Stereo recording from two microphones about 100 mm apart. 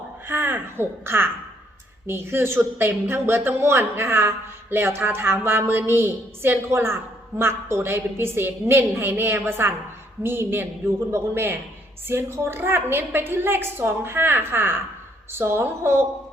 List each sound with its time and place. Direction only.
0.3 s speech: 20° right (ahead or behind)